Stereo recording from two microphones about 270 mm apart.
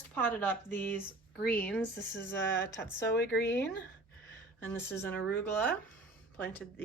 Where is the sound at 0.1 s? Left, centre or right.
Centre.